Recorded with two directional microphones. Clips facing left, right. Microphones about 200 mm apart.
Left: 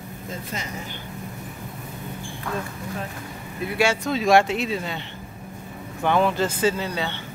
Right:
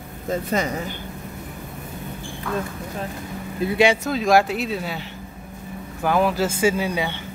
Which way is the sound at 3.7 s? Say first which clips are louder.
Right 4 dB; 20° right (ahead or behind).